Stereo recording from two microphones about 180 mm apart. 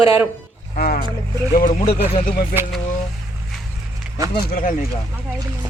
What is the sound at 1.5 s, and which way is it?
Speech, 50° left (ahead or behind).